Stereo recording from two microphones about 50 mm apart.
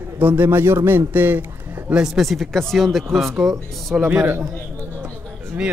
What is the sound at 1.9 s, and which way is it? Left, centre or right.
Speech, centre.